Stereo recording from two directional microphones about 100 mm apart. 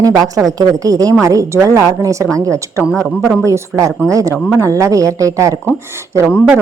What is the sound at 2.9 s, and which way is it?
Speech, 5° left (ahead or behind).